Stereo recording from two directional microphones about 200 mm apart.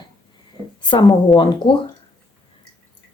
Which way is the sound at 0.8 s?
20° left (ahead or behind).